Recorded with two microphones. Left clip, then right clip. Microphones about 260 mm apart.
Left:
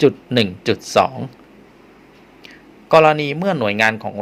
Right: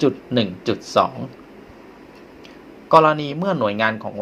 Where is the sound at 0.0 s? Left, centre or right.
Left.